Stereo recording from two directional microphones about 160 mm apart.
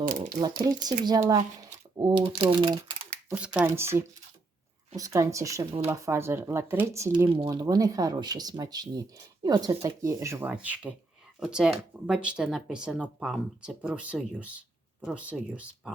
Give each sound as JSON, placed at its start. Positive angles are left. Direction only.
{"t": 0.0, "sound": "speech", "side_deg": -65}
{"t": 0.3, "sound": "speech", "side_deg": -25}
{"t": 3.3, "sound": "speech", "side_deg": -5}
{"t": 7.3, "sound": "speech", "side_deg": -30}